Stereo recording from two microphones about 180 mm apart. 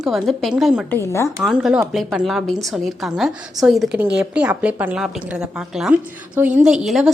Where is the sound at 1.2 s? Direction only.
Centre (ahead or behind).